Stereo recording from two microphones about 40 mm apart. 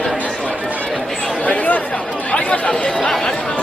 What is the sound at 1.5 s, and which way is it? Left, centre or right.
Speech, left.